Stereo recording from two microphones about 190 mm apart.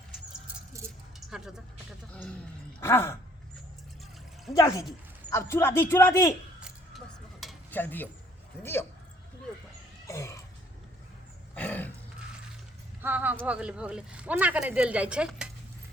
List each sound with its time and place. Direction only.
1.3 s speech: 5° right (ahead or behind)
2.8 s a man's voice: 15° left (ahead or behind)
4.5 s a man's voice: 15° left (ahead or behind)
6.6 s a sound: 5° right (ahead or behind)
7.7 s a man's voice: 10° left (ahead or behind)
10.1 s throat clearing: 15° left (ahead or behind)
11.5 s a sound: 10° left (ahead or behind)
13.0 s a sound: 10° right (ahead or behind)
13.4 s speech: 5° right (ahead or behind)